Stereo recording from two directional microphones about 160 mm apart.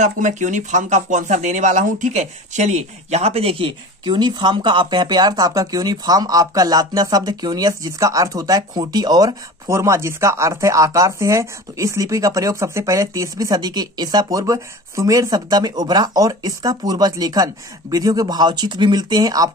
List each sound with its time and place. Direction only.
0.0 s speech: 50° right (ahead or behind); by 19.5 s 25° right (ahead or behind)